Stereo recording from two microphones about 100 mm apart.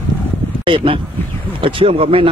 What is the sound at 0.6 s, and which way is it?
Speech, 60° right (ahead or behind).